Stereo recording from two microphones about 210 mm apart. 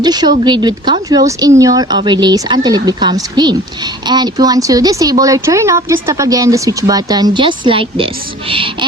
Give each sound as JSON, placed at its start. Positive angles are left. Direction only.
{"t": 0.0, "sound": "speech", "side_deg": -20}